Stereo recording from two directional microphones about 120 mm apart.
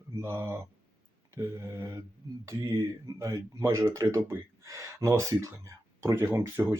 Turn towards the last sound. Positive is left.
turn(degrees=-20)  # may be behind; listen again after turning